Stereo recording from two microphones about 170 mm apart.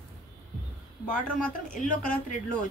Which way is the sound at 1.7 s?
50° left (ahead or behind).